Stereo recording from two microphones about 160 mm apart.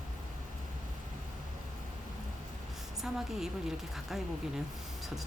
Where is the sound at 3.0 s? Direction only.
Centre (ahead or behind).